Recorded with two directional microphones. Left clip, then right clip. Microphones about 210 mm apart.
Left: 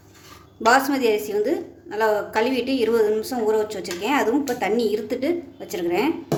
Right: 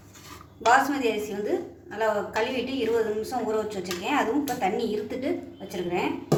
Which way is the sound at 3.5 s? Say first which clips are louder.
Left 6 dB; 55° left (ahead or behind).